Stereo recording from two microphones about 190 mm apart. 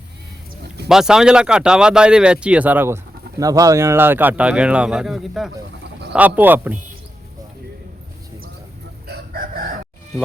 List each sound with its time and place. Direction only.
0.9 s speech: 5° right (ahead or behind)
9.0 s crowing: 55° right (ahead or behind)